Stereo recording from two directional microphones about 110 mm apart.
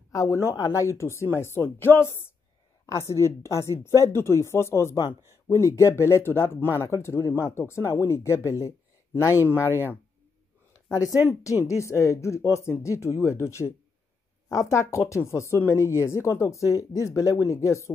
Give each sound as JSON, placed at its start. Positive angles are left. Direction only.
{"t": 0.1, "sound": "speech", "side_deg": 30}
{"t": 9.7, "sound": "speech", "side_deg": -20}
{"t": 10.7, "sound": "a sound", "side_deg": 25}
{"t": 11.6, "sound": "speech", "side_deg": 25}
{"t": 14.7, "sound": "speech", "side_deg": 25}